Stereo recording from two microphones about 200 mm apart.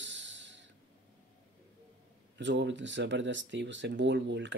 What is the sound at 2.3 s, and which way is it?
Speech, 65° right (ahead or behind).